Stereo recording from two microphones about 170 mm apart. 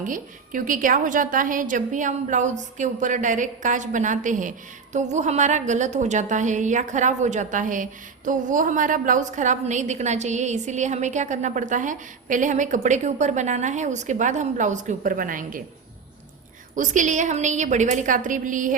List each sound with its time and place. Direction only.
0.0 s a woman's voice: 50° right (ahead or behind)
16.7 s a woman's voice: 50° right (ahead or behind)